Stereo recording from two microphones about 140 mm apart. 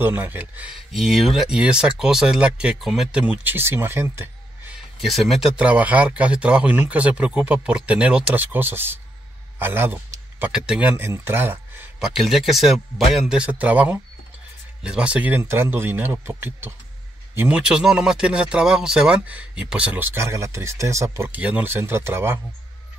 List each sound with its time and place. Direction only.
0.0 s speech: 15° right (ahead or behind)
0.9 s speech: centre (ahead or behind); by 4.3 s 20° right (ahead or behind)
5.0 s speech: centre (ahead or behind); by 11.9 s 15° right (ahead or behind)
12.0 s speech: centre (ahead or behind); by 22.4 s 15° right (ahead or behind)